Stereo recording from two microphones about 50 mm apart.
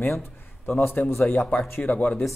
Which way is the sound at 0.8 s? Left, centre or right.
Left.